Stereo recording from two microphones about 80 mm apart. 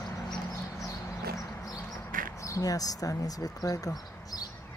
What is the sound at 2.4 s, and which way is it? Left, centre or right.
Speech, left.